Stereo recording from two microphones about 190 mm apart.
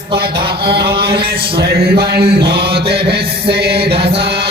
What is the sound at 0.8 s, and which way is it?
Music, 25° right (ahead or behind).